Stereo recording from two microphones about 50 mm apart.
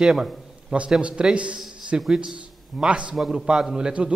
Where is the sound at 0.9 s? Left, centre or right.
Right.